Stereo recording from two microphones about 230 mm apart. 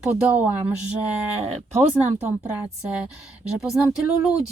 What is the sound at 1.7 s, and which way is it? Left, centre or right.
Speech, right.